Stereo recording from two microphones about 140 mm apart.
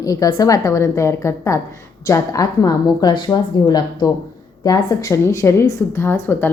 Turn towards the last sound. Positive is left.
turn(degrees=15)  # may be behind; listen again after turning